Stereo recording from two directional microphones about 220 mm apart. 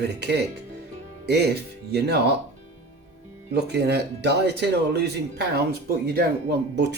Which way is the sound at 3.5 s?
50° right (ahead or behind).